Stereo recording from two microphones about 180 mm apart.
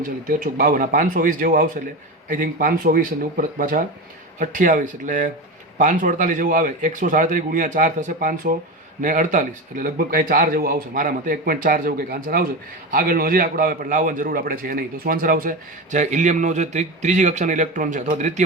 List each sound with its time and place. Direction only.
0.3 s a man's voice: 50° right (ahead or behind)